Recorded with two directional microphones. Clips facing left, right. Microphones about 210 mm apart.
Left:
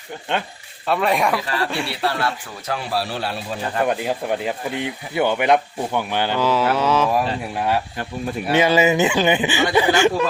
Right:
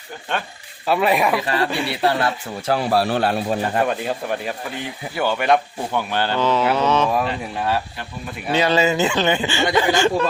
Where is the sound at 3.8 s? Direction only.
15° left (ahead or behind).